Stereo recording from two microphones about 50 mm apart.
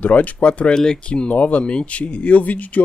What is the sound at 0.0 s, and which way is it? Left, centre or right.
Speech, left.